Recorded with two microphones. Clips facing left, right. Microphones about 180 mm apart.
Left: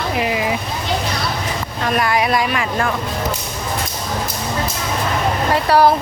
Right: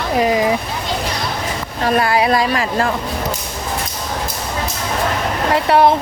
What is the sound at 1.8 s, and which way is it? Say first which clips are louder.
Speech: right 3 dB; 30° right (ahead or behind).